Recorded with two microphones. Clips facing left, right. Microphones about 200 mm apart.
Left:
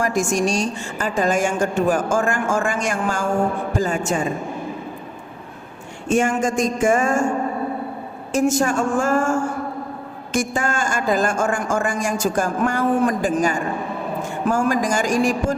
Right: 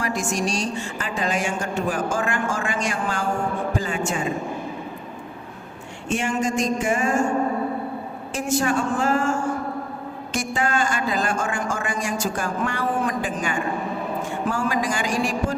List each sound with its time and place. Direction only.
0.0 s a woman's voice: 45° left (ahead or behind)
6.1 s a woman's voice: 45° left (ahead or behind)
8.3 s a woman's voice: 45° left (ahead or behind)